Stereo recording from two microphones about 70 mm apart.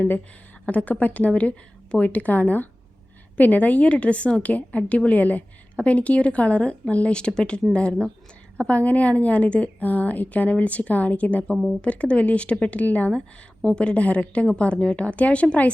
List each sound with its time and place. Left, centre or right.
0.6 s a woman's voice: left
11.5 s speech: centre
11.8 s a woman's voice: centre